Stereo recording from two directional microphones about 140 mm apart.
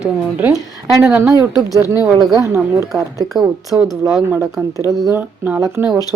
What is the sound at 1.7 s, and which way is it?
Speech, 25° left (ahead or behind).